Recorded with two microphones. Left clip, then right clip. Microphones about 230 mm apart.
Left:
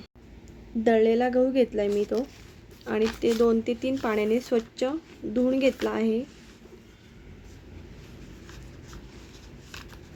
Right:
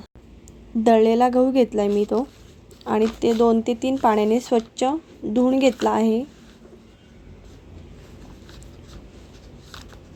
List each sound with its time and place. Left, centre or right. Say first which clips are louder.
0.9 s speech: right 5 dB; right